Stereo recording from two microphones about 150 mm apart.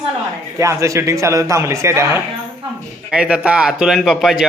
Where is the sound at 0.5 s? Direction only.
20° right (ahead or behind).